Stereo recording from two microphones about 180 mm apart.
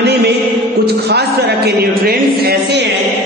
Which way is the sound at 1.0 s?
65° right (ahead or behind).